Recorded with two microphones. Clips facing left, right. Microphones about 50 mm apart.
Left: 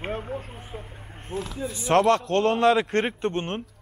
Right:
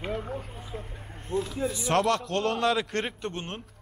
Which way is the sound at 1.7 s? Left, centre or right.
Left.